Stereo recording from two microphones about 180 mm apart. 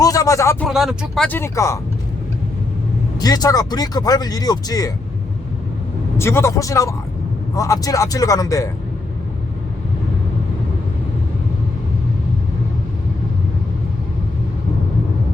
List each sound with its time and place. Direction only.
0.0 s a sound: 20° left (ahead or behind)
0.6 s speech: centre (ahead or behind); by 1.8 s 15° left (ahead or behind)
3.2 s speech: 20° left (ahead or behind)
6.1 s speech: 15° left (ahead or behind)